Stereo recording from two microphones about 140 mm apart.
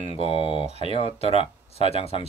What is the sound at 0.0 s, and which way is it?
Speech, 45° left (ahead or behind).